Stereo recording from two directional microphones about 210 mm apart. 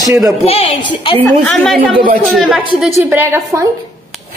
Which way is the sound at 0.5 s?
30° left (ahead or behind).